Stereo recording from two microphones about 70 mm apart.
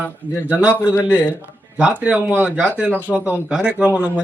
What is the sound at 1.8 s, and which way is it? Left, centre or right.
A man's voice, centre.